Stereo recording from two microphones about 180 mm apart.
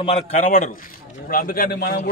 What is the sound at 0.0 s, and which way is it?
A man's voice, 35° left (ahead or behind).